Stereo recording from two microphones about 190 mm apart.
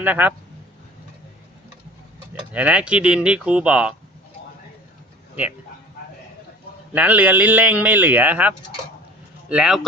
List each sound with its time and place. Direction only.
0.0 s speech: 10° right (ahead or behind)
2.5 s speech: 5° right (ahead or behind)
6.9 s speech: 10° right (ahead or behind)